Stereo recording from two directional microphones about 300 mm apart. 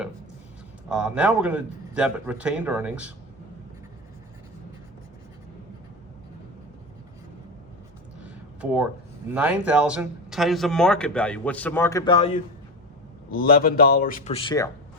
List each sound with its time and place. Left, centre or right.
0.9 s speech: centre
8.6 s speech: centre
13.3 s a man's voice: left; by 14.7 s centre